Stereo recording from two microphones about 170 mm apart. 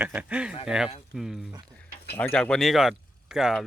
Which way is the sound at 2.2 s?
10° left (ahead or behind).